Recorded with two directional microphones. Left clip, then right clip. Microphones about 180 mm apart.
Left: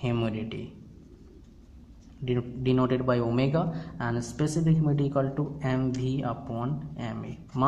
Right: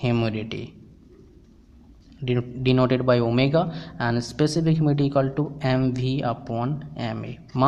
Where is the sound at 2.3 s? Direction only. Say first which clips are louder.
Right 4 dB; 35° right (ahead or behind).